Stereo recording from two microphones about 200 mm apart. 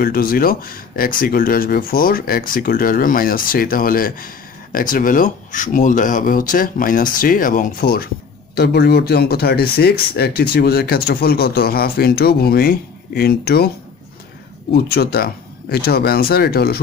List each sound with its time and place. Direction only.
0.0 s speech: 45° left (ahead or behind)
14.7 s speech: 50° left (ahead or behind)